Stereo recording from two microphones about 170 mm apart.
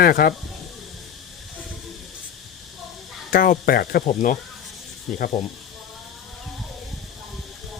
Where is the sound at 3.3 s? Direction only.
60° left (ahead or behind).